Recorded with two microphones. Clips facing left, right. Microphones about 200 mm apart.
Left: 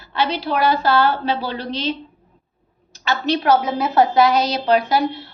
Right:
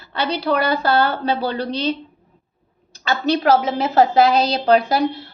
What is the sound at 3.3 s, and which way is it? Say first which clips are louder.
A woman's voice: even; 25° right (ahead or behind).